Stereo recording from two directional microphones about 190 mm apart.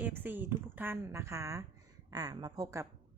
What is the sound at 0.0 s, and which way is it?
A woman's voice, 10° right (ahead or behind).